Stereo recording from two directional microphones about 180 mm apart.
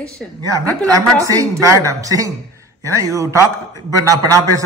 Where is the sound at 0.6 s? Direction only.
20° right (ahead or behind).